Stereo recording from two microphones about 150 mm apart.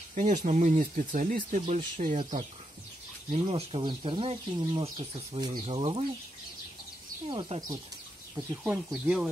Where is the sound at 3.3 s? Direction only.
45° right (ahead or behind).